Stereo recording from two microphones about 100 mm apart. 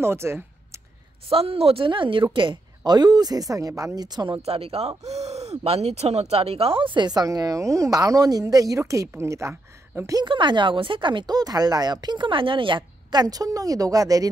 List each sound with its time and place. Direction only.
0.0 s a sound: 25° right (ahead or behind)
1.3 s a woman's voice: 75° right (ahead or behind); by 4.3 s 40° right (ahead or behind)
4.5 s speech: 80° right; by 10.1 s 30° right (ahead or behind)
10.2 s speech: 55° right (ahead or behind); by 14.3 s 35° right (ahead or behind)